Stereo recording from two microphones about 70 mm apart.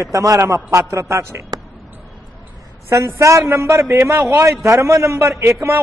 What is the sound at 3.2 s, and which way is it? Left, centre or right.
A man's voice, right.